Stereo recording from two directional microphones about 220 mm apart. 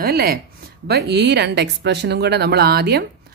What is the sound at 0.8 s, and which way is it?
Speech, 45° right (ahead or behind).